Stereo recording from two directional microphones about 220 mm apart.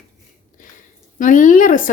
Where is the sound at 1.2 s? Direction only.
35° left (ahead or behind).